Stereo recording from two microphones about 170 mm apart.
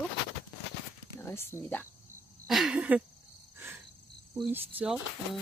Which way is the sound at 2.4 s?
Centre (ahead or behind).